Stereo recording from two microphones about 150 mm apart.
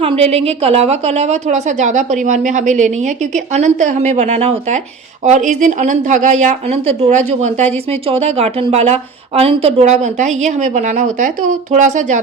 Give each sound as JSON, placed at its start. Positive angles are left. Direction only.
{"t": 0.0, "sound": "a woman's voice", "side_deg": -40}
{"t": 7.4, "sound": "a woman's voice", "side_deg": -45}